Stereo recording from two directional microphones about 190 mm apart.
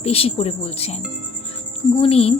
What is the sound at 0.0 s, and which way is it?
Speech, 30° left (ahead or behind).